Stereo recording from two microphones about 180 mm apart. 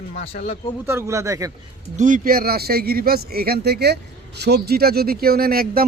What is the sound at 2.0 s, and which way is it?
A man's voice, 45° right (ahead or behind).